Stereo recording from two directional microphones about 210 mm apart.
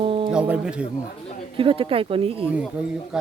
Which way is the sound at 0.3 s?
5° right (ahead or behind).